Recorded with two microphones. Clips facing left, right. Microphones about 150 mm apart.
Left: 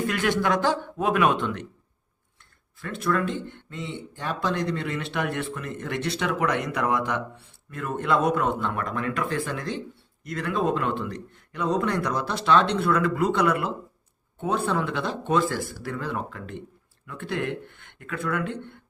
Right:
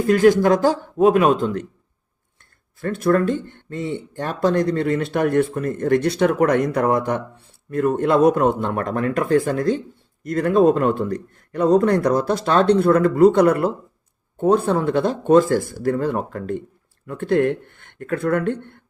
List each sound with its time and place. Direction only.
0.1 s a man's voice: 40° right (ahead or behind)
2.8 s a man's voice: 45° right (ahead or behind)